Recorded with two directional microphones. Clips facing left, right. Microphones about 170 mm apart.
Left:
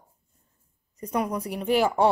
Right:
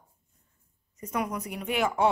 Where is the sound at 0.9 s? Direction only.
30° left (ahead or behind).